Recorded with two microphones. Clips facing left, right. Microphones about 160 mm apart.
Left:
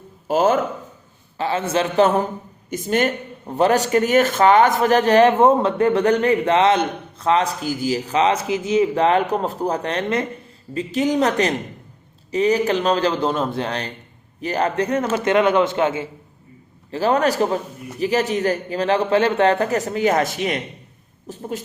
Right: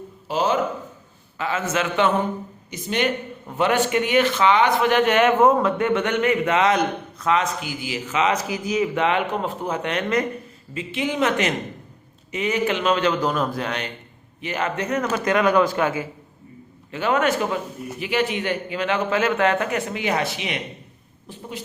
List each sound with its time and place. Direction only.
0.3 s speech: 50° left (ahead or behind)
1.4 s a man's voice: 30° left (ahead or behind)
16.9 s a man's voice: 35° left (ahead or behind)